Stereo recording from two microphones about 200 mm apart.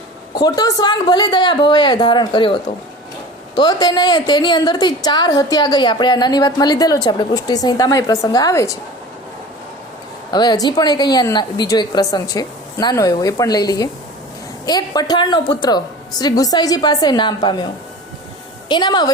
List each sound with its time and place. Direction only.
0.3 s a woman's voice: 20° left (ahead or behind)
10.3 s a woman's voice: 20° left (ahead or behind)
18.7 s a woman's voice: 20° left (ahead or behind)